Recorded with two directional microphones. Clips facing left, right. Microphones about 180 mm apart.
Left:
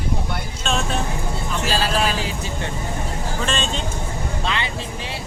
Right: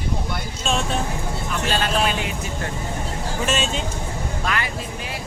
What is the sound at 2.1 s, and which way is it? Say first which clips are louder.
Speech: left 1 dB; 30° left (ahead or behind).